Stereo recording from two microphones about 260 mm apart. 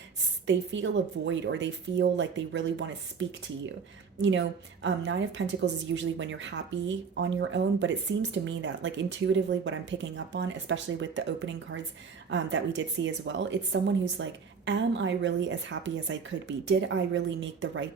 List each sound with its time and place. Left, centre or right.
0.4 s a woman's voice: right